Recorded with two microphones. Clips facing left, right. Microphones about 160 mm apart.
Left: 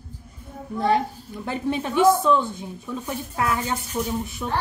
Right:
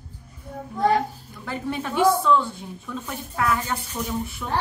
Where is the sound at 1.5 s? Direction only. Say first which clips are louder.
Left 3 dB; 20° left (ahead or behind).